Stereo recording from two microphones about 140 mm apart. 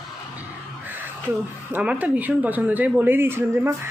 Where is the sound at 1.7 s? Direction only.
10° right (ahead or behind).